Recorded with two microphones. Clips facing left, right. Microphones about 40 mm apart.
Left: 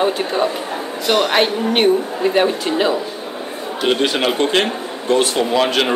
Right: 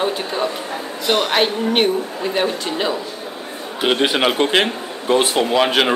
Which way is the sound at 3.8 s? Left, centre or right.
Centre.